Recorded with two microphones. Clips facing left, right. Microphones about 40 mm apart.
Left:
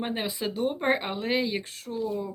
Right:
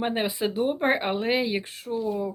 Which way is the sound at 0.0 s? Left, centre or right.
Centre.